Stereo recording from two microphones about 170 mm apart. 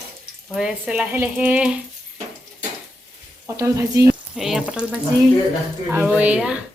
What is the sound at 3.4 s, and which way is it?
Speech, 15° right (ahead or behind).